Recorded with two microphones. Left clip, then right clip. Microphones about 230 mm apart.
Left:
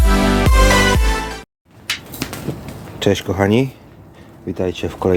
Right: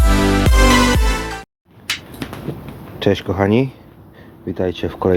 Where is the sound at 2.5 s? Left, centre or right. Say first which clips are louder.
Left 2 dB; left.